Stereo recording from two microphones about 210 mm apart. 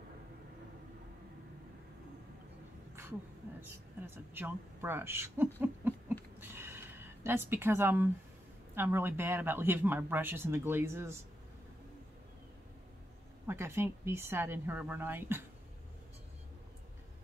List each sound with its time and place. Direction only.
3.6 s speech: 10° right (ahead or behind)
5.6 s owl: 10° right (ahead or behind)
6.4 s a sound: 10° right (ahead or behind)
8.7 s speech: 10° right (ahead or behind)
13.5 s speech: 10° right (ahead or behind)